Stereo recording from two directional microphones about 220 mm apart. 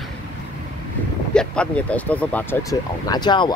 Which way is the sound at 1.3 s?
5° left (ahead or behind).